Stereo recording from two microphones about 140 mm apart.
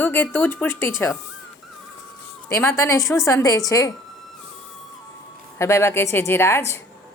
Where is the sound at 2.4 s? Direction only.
20° left (ahead or behind).